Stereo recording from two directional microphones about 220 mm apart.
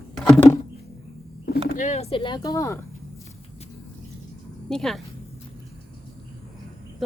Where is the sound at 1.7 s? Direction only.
35° left (ahead or behind); by 2.8 s 15° left (ahead or behind).